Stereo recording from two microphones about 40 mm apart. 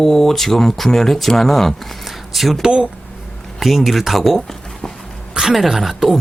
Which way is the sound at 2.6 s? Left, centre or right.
Right.